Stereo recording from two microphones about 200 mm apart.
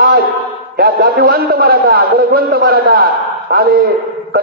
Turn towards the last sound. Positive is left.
turn(degrees=-50)  # may be behind; listen again after turning